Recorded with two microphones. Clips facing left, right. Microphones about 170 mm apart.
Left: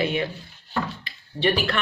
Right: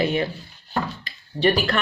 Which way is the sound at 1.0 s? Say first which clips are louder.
Right 3 dB; 40° right (ahead or behind).